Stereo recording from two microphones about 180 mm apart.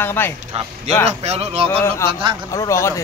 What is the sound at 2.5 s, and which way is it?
Speech, 15° left (ahead or behind).